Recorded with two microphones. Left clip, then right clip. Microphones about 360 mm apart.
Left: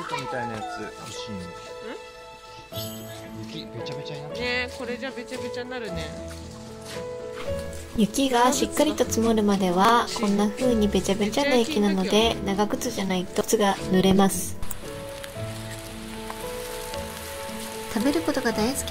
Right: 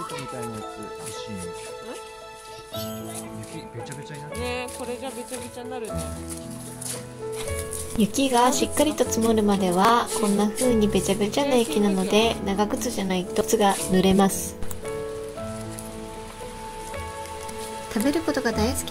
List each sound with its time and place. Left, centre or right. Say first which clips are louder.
4.4 s speech: left 2 dB; centre
8.0 s a woman's voice: right 1 dB; centre
18.0 s a woman's voice: even; centre